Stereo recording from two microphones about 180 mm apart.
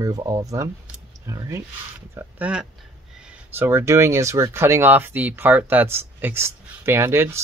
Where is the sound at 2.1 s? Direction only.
5° right (ahead or behind).